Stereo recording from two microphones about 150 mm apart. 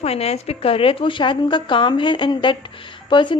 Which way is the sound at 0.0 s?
40° left (ahead or behind).